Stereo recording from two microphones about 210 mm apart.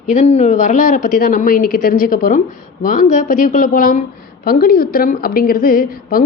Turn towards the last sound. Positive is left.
turn(degrees=45)  # may be behind; listen again after turning